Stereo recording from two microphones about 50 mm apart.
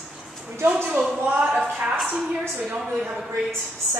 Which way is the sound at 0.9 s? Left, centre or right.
Right.